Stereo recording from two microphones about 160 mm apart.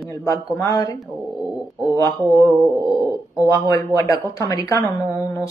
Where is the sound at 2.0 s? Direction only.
15° left (ahead or behind).